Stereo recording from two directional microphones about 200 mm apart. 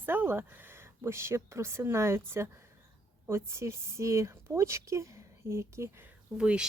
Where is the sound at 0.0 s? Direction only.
10° right (ahead or behind).